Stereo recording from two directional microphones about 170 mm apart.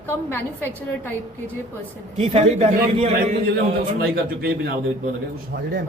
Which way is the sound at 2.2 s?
35° right (ahead or behind).